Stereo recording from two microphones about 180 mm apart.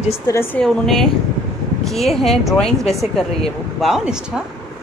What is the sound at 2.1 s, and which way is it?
A woman's voice, centre (ahead or behind).